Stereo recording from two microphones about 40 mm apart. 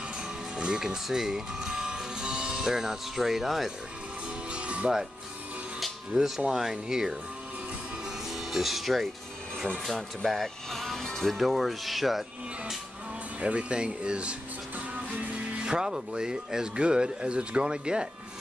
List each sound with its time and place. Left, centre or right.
0.6 s speech: right
4.5 s music: right
6.1 s speech: centre
8.3 s speech: centre
13.4 s speech: right
15.5 s speech: right